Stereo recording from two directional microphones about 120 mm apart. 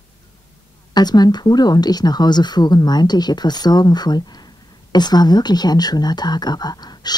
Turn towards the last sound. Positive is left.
turn(degrees=35)  # may be behind; listen again after turning